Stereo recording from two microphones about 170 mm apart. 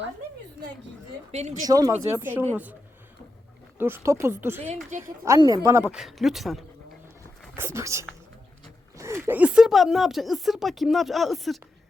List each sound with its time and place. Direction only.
1.3 s speech: 40° right (ahead or behind)
1.6 s a woman's voice: 20° right (ahead or behind)
3.8 s a woman's voice: 15° right (ahead or behind)
5.9 s speech: centre (ahead or behind)
7.5 s a woman's voice: 15° right (ahead or behind)